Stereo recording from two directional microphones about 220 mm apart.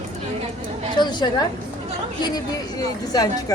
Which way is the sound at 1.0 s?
20° left (ahead or behind).